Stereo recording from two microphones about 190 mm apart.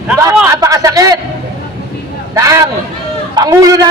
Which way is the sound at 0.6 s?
15° right (ahead or behind).